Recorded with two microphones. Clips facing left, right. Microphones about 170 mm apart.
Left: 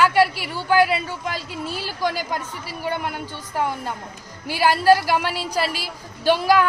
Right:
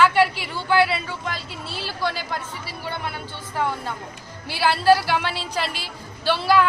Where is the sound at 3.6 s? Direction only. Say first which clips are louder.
Left 1 dB; 10° left (ahead or behind).